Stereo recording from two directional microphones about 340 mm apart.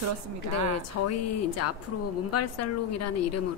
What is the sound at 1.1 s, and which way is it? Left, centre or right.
A woman's voice, left.